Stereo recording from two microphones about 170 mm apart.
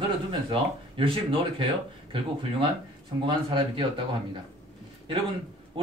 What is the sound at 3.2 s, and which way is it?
Speech, 30° right (ahead or behind).